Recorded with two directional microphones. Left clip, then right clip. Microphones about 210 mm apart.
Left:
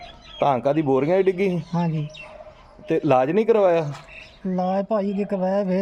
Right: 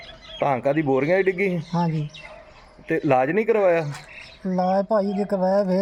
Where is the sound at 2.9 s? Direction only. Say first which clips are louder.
Left 1 dB; 15° left (ahead or behind).